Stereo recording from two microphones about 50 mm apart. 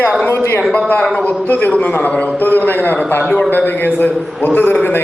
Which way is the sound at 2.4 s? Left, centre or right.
Left.